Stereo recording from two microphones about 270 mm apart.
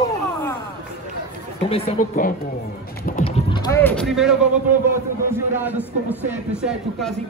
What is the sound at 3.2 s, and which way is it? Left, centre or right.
Clip-clop, left.